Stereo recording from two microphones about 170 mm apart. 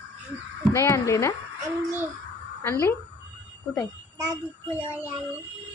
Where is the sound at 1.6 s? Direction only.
15° right (ahead or behind).